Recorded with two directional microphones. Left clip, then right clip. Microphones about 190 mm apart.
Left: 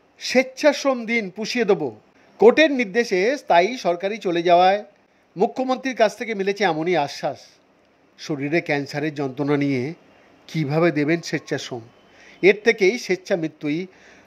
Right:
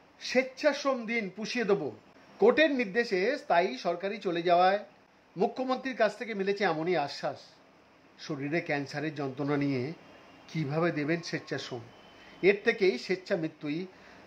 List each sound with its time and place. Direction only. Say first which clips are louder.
0.2 s speech: left 9 dB; 35° left (ahead or behind)